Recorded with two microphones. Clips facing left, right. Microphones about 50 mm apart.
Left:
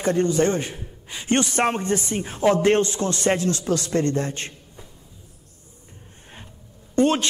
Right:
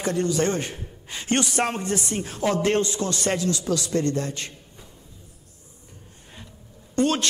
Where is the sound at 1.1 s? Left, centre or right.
Centre.